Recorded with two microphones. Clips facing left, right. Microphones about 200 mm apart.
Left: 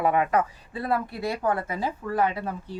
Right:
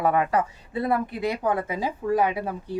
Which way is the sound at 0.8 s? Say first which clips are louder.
Right 3 dB; 20° right (ahead or behind).